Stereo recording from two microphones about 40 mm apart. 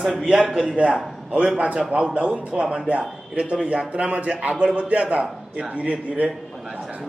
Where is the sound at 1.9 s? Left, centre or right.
Right.